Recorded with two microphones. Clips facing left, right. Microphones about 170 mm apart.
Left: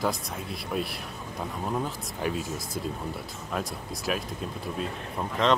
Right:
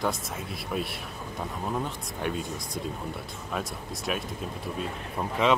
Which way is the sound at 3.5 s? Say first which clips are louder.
Left 1 dB; centre (ahead or behind).